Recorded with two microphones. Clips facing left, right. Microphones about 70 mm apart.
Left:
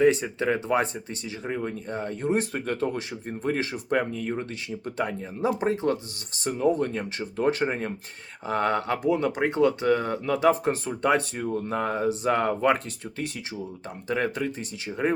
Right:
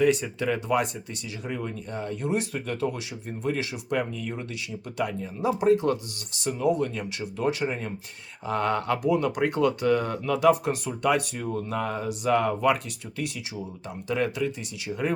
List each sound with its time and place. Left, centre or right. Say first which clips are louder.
0.0 s speech: left 2 dB; left